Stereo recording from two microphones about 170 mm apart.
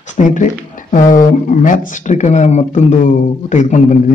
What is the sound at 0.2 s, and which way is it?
Speech, 45° left (ahead or behind).